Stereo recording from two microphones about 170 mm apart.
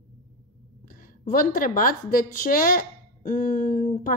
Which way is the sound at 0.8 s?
55° left (ahead or behind).